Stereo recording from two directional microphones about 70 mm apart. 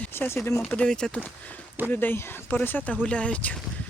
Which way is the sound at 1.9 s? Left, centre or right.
Left.